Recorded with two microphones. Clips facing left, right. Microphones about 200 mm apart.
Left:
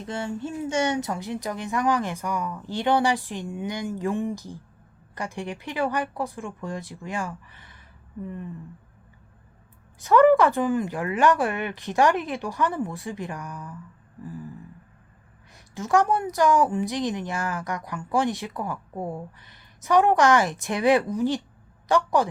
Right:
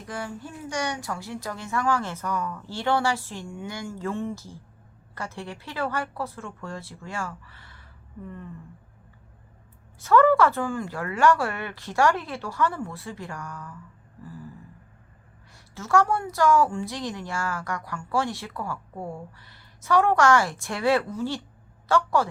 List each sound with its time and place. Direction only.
0.0 s a woman's voice: 25° left (ahead or behind)
10.0 s a woman's voice: 15° left (ahead or behind)
15.5 s a woman's voice: 15° left (ahead or behind)